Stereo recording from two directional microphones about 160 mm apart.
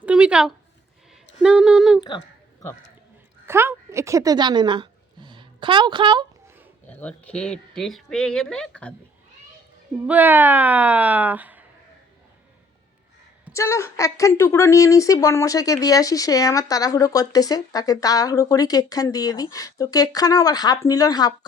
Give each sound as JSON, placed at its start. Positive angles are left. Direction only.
{"t": 0.0, "sound": "a woman's voice", "side_deg": -5}
{"t": 2.0, "sound": "a sound", "side_deg": 25}
{"t": 3.4, "sound": "speech", "side_deg": -15}
{"t": 6.8, "sound": "speech", "side_deg": 10}
{"t": 10.1, "sound": "speech", "side_deg": -10}
{"t": 13.5, "sound": "a woman's voice", "side_deg": 15}